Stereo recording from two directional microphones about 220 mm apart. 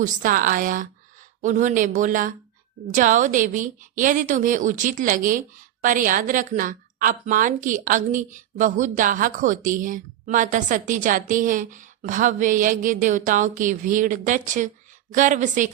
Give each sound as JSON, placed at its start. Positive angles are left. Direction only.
{"t": 0.0, "sound": "a woman's voice", "side_deg": -40}